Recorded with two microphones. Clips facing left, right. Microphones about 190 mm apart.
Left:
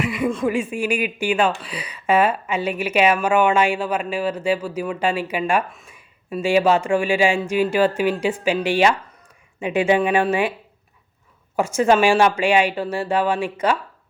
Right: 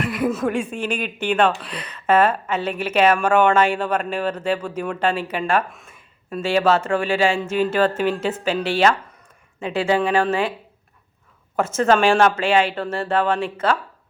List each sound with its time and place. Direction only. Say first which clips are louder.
0.0 s a sound: even; 5° right (ahead or behind)
0.5 s speech: left 2 dB; 5° left (ahead or behind)
5.6 s speech: even; centre (ahead or behind)
5.9 s speech: left 1 dB; 10° left (ahead or behind)
11.5 s speech: left 1 dB; 10° left (ahead or behind)